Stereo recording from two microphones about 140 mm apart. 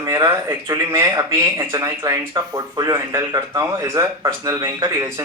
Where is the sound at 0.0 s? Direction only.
25° right (ahead or behind).